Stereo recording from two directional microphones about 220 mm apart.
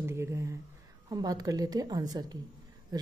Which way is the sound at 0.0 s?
10° right (ahead or behind).